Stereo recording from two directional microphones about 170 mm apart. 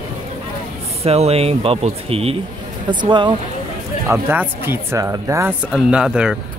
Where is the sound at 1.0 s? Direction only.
35° right (ahead or behind).